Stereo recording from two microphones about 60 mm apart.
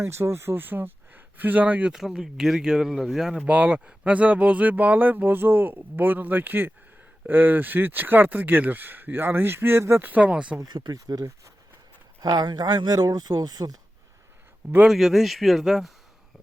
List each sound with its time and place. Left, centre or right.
0.0 s speech: right
1.9 s speech: centre
3.4 s speech: right
10.0 s speech: right
10.6 s speech: right
14.8 s speech: centre